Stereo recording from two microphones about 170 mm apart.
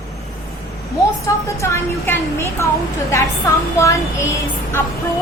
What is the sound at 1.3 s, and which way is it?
A woman's voice, 15° left (ahead or behind).